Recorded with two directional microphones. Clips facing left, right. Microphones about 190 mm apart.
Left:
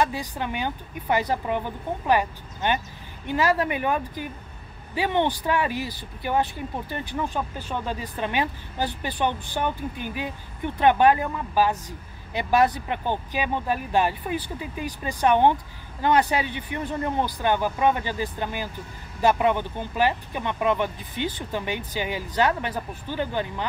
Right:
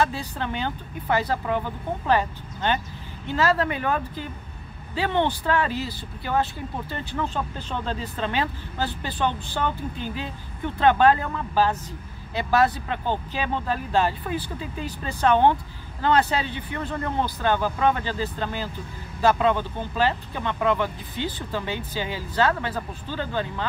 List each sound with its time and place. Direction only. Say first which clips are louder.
0.0 s speech: even; 15° left (ahead or behind)